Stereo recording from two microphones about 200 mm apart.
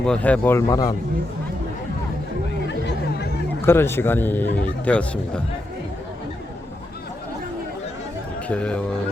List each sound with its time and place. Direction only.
0.0 s a man's voice: 5° left (ahead or behind)
2.6 s chatter: 60° left (ahead or behind)
3.7 s a man's voice: 10° left (ahead or behind)
8.4 s speech: 5° left (ahead or behind)